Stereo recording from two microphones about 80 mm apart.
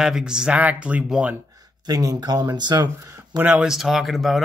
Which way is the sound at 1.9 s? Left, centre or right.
Right.